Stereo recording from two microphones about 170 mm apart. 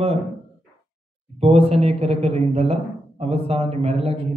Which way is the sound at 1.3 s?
35° right (ahead or behind).